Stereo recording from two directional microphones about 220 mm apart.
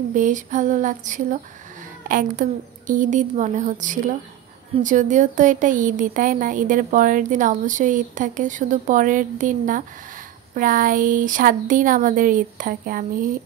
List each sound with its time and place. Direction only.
0.1 s speech: 35° right (ahead or behind)